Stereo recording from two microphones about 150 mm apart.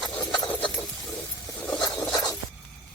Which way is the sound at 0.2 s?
30° left (ahead or behind).